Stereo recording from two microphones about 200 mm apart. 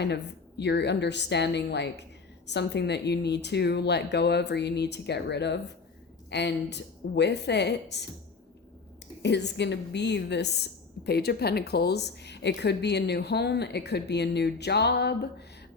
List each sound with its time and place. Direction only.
0.6 s speech: 60° left (ahead or behind)
9.2 s speech: 60° left (ahead or behind)